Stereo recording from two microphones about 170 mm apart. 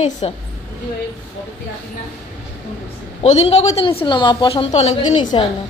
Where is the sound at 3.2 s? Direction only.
40° left (ahead or behind).